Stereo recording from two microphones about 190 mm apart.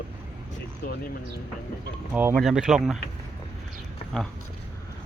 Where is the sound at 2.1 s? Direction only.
10° right (ahead or behind).